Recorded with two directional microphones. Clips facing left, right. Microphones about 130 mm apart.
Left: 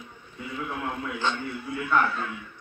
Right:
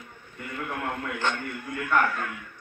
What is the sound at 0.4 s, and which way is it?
A man's voice, 65° right (ahead or behind).